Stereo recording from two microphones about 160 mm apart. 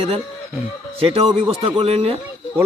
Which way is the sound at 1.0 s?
35° right (ahead or behind).